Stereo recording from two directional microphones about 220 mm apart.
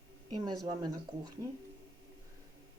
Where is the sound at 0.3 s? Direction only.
20° right (ahead or behind).